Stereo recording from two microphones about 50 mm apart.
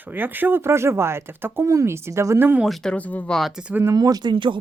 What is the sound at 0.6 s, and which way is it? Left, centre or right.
Speech, right.